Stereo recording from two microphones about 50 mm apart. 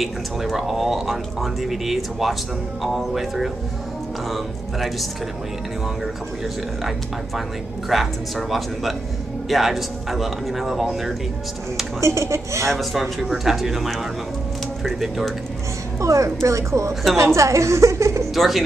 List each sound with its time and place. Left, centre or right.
0.0 s speech: centre
7.9 s speech: centre
12.0 s speech: right
12.6 s speech: centre
13.0 s speech: centre
16.0 s a woman's voice: right
18.3 s speech: centre